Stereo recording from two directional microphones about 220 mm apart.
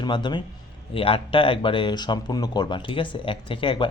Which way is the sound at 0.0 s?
20° left (ahead or behind).